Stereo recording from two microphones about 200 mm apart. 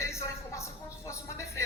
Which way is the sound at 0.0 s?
15° left (ahead or behind).